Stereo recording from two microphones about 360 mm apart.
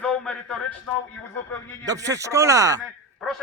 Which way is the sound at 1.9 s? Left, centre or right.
Centre.